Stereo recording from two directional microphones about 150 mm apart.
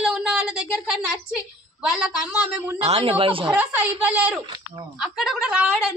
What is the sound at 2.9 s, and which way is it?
Speech, 40° right (ahead or behind).